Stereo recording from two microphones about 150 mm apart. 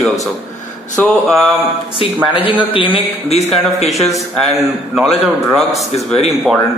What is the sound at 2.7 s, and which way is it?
Speech, 35° left (ahead or behind).